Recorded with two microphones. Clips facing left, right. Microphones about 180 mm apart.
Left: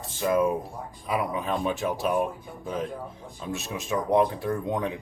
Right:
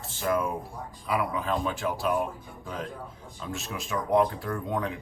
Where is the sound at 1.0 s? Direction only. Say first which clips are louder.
Left 1 dB; 20° left (ahead or behind).